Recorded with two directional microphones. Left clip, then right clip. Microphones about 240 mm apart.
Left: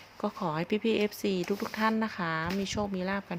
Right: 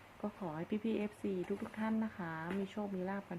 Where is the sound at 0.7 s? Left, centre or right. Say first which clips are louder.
Left 11 dB; left.